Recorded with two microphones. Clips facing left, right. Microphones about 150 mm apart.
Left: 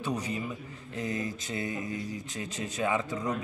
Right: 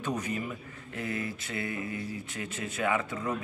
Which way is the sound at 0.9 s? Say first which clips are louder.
Left 1 dB; 20° left (ahead or behind).